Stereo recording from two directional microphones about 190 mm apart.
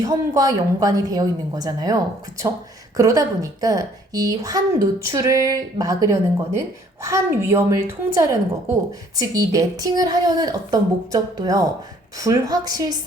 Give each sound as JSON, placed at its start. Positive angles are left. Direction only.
{"t": 0.0, "sound": "a woman's voice", "side_deg": -20}
{"t": 3.0, "sound": "a woman's voice", "side_deg": -15}